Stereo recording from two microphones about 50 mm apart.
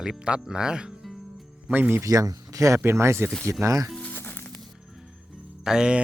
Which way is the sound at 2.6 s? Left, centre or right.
Right.